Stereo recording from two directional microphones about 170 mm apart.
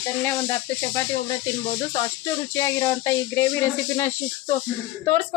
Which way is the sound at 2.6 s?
20° left (ahead or behind).